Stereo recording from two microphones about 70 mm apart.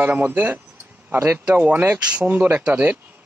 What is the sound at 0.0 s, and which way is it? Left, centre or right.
Speech, right.